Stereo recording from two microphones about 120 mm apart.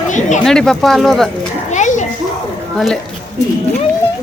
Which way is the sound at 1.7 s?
90° left.